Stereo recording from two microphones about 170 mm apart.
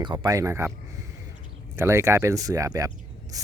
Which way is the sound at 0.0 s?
25° right (ahead or behind).